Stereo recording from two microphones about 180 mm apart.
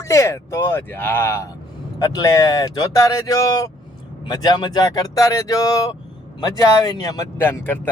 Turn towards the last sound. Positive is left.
turn(degrees=10)  # may be behind; listen again after turning